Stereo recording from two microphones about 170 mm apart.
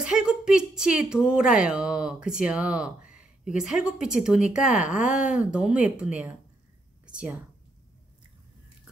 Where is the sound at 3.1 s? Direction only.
5° right (ahead or behind).